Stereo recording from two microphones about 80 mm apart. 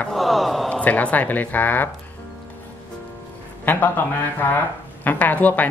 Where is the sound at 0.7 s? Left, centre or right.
Centre.